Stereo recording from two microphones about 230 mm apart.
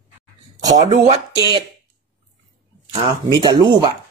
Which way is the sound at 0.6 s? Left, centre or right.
Centre.